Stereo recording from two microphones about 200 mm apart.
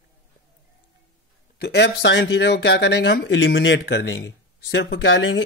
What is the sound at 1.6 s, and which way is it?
Speech, 55° left (ahead or behind).